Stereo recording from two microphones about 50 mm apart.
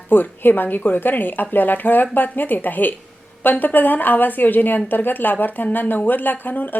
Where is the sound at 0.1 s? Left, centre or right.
Left.